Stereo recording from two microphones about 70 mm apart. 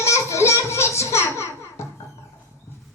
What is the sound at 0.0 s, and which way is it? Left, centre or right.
Music, left.